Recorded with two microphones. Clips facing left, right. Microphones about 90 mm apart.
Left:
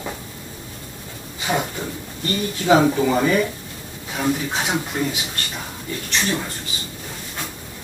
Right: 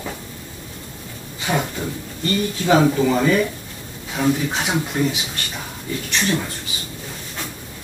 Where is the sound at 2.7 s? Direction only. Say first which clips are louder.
Even; 10° left (ahead or behind).